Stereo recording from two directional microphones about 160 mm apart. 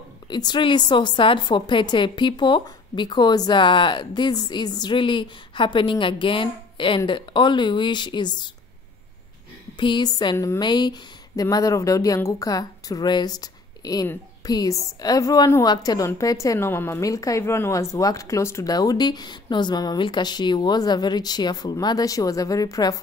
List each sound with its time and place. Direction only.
0.3 s a woman's voice: 25° left (ahead or behind)
9.8 s a woman's voice: 30° left (ahead or behind)